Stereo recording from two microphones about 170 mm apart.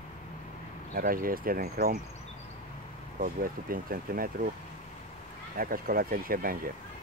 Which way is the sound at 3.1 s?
55° right (ahead or behind).